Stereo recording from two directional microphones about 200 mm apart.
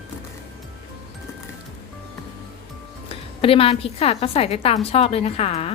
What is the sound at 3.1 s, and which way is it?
A woman's voice, 30° left (ahead or behind).